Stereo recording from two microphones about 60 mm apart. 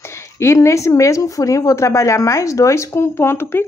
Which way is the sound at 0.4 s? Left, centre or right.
Left.